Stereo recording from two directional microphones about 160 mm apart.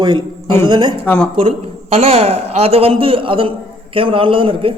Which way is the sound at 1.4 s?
40° right (ahead or behind).